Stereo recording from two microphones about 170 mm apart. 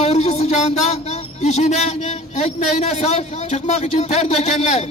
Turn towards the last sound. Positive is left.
turn(degrees=40)  # may be behind; listen again after turning